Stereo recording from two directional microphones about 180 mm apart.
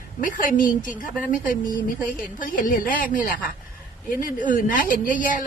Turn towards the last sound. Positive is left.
turn(degrees=50)  # may be behind; listen again after turning